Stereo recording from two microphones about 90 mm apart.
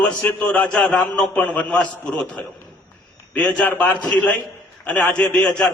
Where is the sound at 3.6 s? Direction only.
15° left (ahead or behind).